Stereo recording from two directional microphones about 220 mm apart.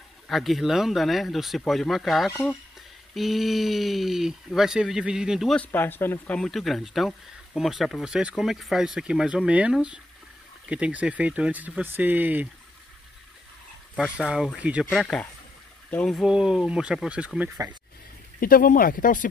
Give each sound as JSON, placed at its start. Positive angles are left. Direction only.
{"t": 0.3, "sound": "speech", "side_deg": 0}
{"t": 14.1, "sound": "speech", "side_deg": -5}
{"t": 18.4, "sound": "speech", "side_deg": 40}